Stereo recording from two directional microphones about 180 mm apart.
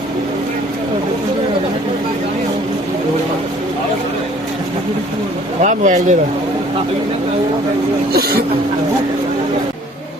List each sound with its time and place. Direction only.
5.6 s speech: 40° right (ahead or behind)
8.1 s music: 60° right (ahead or behind)